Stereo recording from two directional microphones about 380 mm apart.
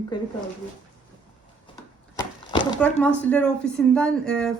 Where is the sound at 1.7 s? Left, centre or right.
Centre.